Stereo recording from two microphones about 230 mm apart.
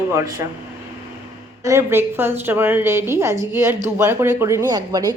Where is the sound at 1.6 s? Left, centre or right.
Centre.